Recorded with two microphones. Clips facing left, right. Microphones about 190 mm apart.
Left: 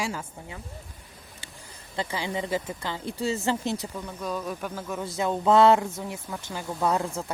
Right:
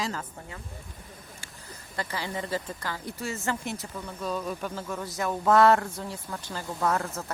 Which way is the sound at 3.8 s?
15° left (ahead or behind).